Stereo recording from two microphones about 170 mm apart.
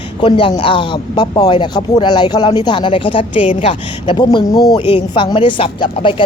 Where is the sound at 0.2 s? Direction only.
30° left (ahead or behind).